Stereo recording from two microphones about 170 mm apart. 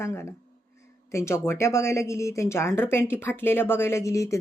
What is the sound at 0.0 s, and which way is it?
Speech, 15° left (ahead or behind).